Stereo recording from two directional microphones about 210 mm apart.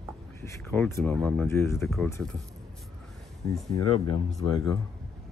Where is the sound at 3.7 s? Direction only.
25° left (ahead or behind).